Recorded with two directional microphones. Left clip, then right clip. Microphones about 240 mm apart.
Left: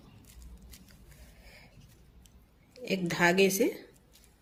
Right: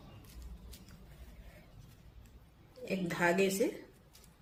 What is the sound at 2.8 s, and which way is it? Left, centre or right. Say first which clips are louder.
Speech: left 5 dB; left.